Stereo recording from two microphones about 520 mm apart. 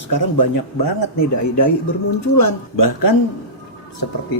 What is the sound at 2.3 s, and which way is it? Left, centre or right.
Speech, left.